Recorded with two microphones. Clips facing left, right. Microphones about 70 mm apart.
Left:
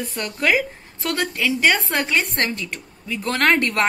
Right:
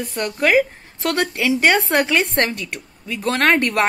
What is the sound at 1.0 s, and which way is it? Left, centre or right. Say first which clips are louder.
Speech: right 3 dB; right.